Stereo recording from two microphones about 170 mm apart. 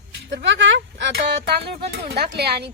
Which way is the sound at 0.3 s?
90° right.